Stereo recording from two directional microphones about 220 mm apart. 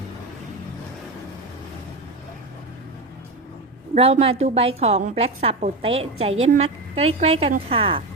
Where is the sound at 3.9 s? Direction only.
25° right (ahead or behind).